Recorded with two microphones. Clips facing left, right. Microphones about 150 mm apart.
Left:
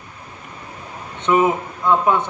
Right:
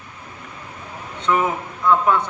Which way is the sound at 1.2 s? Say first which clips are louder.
Left 4 dB; 20° left (ahead or behind).